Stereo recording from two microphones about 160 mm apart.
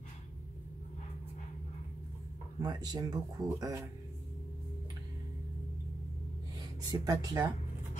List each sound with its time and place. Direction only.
2.6 s speech: 25° right (ahead or behind)
6.9 s speech: 25° right (ahead or behind)